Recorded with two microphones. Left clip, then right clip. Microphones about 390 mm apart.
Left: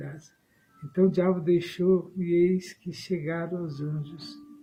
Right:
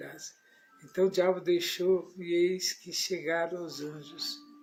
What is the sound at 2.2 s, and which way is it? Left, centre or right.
Speech, left.